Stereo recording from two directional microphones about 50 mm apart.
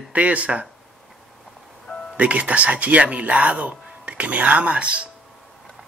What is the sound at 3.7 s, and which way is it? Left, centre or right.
Speech, right.